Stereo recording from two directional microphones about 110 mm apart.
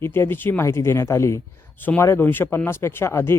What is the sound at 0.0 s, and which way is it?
Speech, 20° left (ahead or behind).